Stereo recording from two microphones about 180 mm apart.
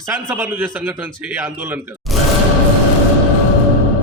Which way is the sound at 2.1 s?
Centre (ahead or behind).